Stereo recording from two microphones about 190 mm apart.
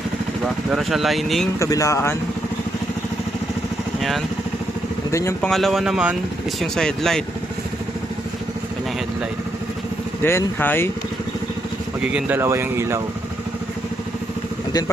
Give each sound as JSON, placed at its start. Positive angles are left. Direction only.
{"t": 0.4, "sound": "speech", "side_deg": 0}
{"t": 1.5, "sound": "speech", "side_deg": 15}
{"t": 5.1, "sound": "speech", "side_deg": 15}
{"t": 5.5, "sound": "speech", "side_deg": 0}
{"t": 10.2, "sound": "speech", "side_deg": 15}
{"t": 12.1, "sound": "speech", "side_deg": -10}